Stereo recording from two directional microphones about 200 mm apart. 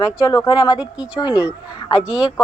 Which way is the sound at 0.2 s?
20° left (ahead or behind).